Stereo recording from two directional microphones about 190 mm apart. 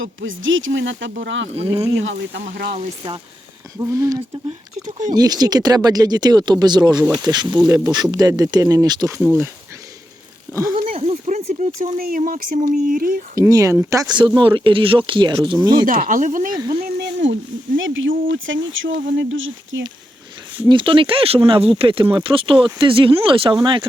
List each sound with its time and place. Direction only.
0.0 s speech: 90° right
1.5 s speech: 30° right (ahead or behind)
2.0 s speech: 85° right
2.4 s speech: 55° right (ahead or behind)
3.8 s speech: 15° right (ahead or behind)
4.9 s speech: 40° right (ahead or behind)
5.1 s speech: 20° right (ahead or behind)
10.9 s speech: 30° right (ahead or behind); by 13.2 s 50° right (ahead or behind)
13.3 s speech: 15° right (ahead or behind)
15.9 s speech: 45° right (ahead or behind)
16.6 s speech: 20° right (ahead or behind)
16.8 s a sound: 70° right (ahead or behind)
17.7 s speech: 85° right
20.7 s speech: 25° right (ahead or behind)